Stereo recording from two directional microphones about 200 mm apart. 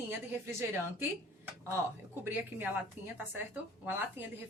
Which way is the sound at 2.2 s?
10° right (ahead or behind).